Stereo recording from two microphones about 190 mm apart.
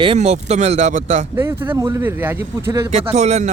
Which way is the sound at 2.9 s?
35° right (ahead or behind).